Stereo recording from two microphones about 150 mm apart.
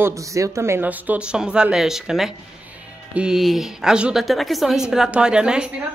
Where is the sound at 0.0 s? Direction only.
20° right (ahead or behind).